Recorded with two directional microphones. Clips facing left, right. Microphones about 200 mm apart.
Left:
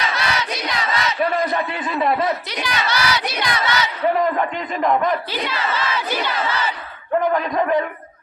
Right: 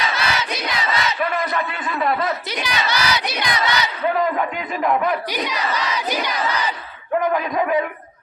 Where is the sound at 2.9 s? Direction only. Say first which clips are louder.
Even; 15° right (ahead or behind).